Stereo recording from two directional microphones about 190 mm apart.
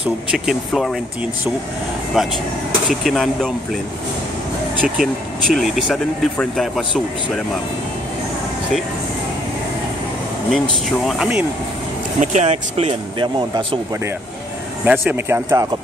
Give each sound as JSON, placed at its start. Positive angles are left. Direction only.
{"t": 0.3, "sound": "speech", "side_deg": 0}
{"t": 4.8, "sound": "speech", "side_deg": 0}
{"t": 11.1, "sound": "speech", "side_deg": -5}
{"t": 12.2, "sound": "speech", "side_deg": -40}
{"t": 14.9, "sound": "speech", "side_deg": -10}